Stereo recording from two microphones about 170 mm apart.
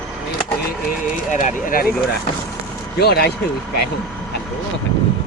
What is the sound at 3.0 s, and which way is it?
Speech, 65° left (ahead or behind).